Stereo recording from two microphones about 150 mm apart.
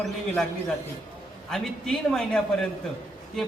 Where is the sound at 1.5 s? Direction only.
5° left (ahead or behind).